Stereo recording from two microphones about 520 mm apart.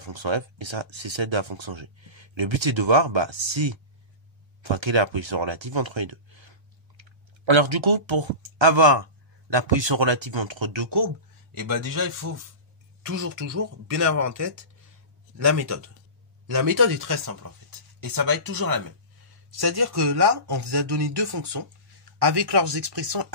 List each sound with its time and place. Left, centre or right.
0.0 s speech: right
11.5 s speech: right